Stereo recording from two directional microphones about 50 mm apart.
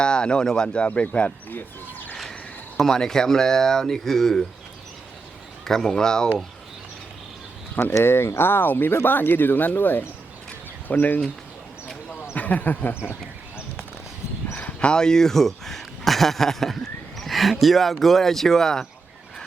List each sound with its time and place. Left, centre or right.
0.0 s speech: centre
2.7 s speech: centre
5.6 s speech: centre
8.0 s speech: left
12.3 s speech: left
14.6 s speech: left